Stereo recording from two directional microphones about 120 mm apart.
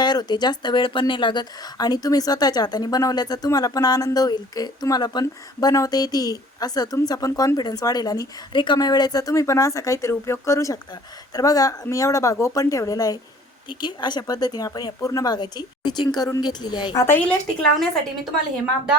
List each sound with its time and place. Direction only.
0.0 s speech: 35° left (ahead or behind)
17.0 s speech: 15° left (ahead or behind)